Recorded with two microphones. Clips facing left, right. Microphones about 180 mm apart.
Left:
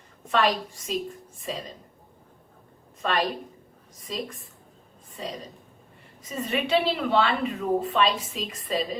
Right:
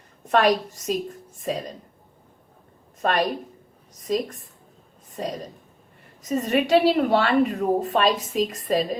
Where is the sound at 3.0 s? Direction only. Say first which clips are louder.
Right 4 dB; 45° right (ahead or behind).